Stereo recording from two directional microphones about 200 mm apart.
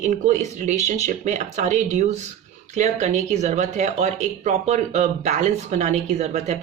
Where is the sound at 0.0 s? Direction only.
35° right (ahead or behind).